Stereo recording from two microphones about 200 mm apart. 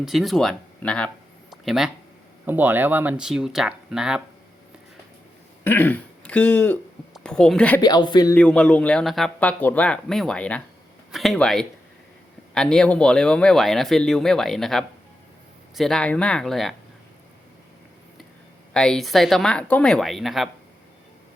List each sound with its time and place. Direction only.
0.0 s speech: centre (ahead or behind)
5.6 s speech: 10° left (ahead or behind)
7.8 s a man's voice: 20° left (ahead or behind)
8.4 s speech: 5° left (ahead or behind)
18.7 s speech: 5° left (ahead or behind)